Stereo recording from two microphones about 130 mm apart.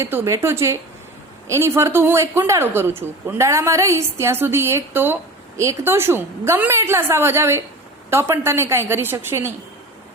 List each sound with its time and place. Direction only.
0.0 s speech: 20° right (ahead or behind)